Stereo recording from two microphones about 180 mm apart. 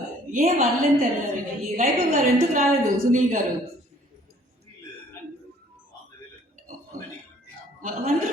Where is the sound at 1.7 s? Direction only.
50° right (ahead or behind).